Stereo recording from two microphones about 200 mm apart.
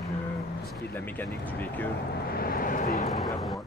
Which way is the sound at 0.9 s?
10° left (ahead or behind).